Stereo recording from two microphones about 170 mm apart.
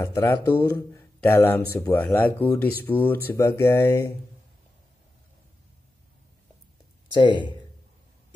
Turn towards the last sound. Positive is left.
turn(degrees=25)  # may be behind; listen again after turning